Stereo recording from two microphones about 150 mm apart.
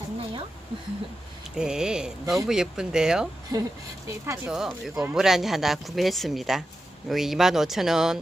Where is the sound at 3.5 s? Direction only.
25° right (ahead or behind).